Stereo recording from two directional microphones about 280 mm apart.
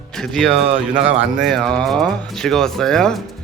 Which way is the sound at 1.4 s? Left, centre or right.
Centre.